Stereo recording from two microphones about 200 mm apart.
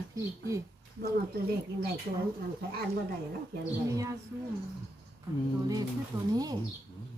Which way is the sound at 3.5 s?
55° right (ahead or behind).